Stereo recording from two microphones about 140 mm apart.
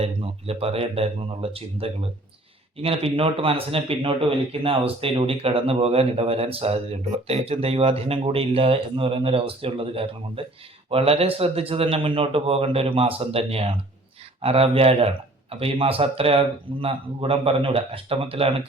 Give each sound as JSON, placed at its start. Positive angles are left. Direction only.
{"t": 0.0, "sound": "speech", "side_deg": -45}